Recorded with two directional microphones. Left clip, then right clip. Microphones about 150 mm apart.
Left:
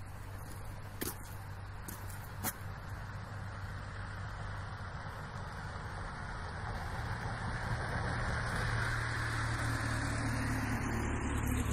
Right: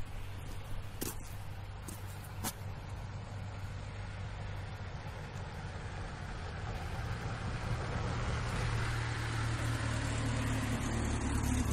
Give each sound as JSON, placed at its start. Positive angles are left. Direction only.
{"t": 5.7, "sound": "vehicle", "side_deg": -40}